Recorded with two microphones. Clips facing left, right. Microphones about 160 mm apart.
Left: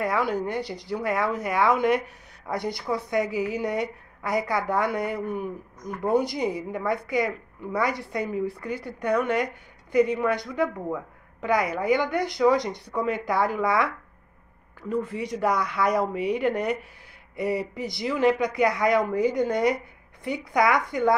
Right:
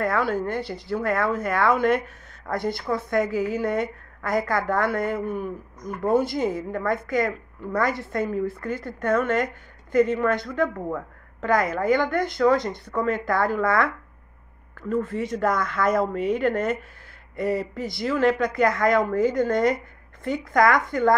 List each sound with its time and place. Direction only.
0.0 s a woman's voice: 15° left (ahead or behind)